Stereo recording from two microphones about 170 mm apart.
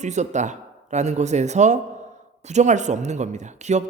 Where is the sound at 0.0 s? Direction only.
45° right (ahead or behind).